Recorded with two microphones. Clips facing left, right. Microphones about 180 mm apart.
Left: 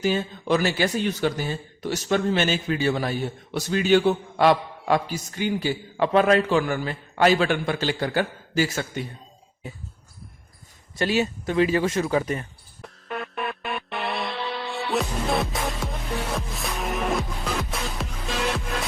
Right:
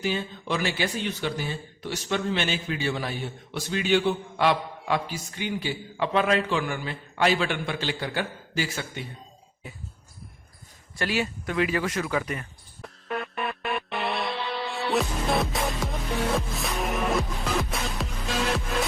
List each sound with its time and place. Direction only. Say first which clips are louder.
0.0 s speech: left 5 dB; 45° left (ahead or behind)
10.9 s speech: left 5 dB; 25° left (ahead or behind)
12.8 s music: right 1 dB; centre (ahead or behind)